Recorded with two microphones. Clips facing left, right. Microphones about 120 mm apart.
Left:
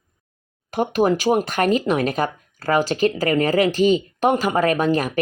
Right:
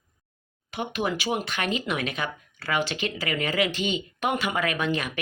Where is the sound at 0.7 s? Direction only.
40° left (ahead or behind).